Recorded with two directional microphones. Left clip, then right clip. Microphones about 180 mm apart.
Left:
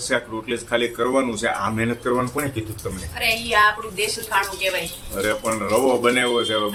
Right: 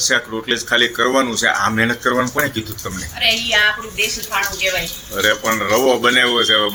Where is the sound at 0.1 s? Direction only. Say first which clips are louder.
Right 6 dB; 10° right (ahead or behind).